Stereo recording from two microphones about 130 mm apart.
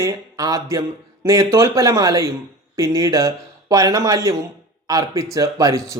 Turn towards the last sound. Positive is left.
turn(degrees=-25)  # may be behind; listen again after turning